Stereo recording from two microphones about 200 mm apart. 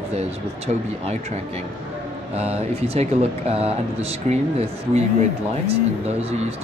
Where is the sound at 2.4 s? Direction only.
30° right (ahead or behind).